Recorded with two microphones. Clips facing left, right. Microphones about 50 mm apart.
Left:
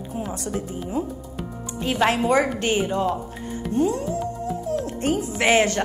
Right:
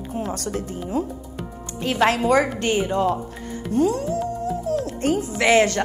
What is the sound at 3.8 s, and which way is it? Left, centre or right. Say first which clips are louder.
Speech: right 2 dB; left.